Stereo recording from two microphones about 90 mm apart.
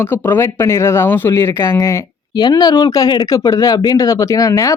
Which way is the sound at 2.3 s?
50° left (ahead or behind).